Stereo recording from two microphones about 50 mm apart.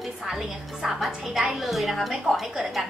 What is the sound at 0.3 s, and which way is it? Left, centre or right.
A woman's voice, centre.